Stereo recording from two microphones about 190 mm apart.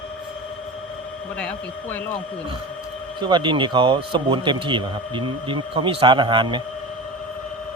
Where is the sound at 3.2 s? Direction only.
25° right (ahead or behind).